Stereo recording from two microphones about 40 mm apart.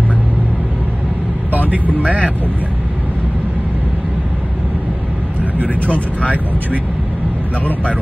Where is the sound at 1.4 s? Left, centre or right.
Right.